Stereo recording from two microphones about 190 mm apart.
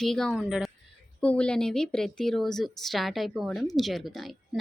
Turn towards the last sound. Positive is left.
turn(degrees=0)  # may be behind; listen again after turning